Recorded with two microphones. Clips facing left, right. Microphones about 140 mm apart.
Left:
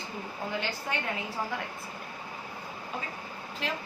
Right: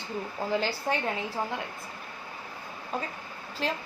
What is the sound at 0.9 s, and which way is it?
Speech, 35° right (ahead or behind).